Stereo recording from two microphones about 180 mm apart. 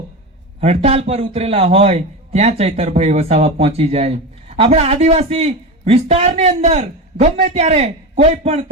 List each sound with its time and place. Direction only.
0.6 s a man's voice: 35° right (ahead or behind)